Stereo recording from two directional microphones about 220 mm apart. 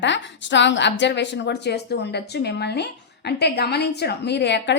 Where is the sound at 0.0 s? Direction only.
55° left (ahead or behind).